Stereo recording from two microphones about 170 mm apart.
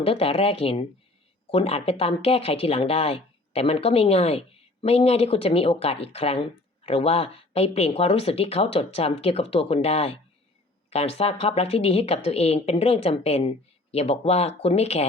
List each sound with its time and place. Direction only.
0.0 s speech: 35° left (ahead or behind)